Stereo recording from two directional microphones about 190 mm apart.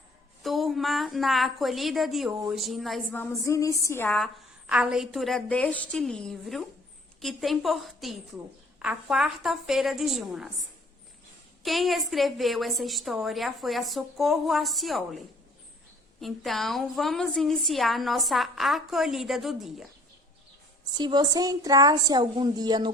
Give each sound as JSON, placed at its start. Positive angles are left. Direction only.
{"t": 0.4, "sound": "a woman's voice", "side_deg": 0}
{"t": 16.2, "sound": "a woman's voice", "side_deg": 0}
{"t": 20.9, "sound": "a woman's voice", "side_deg": -25}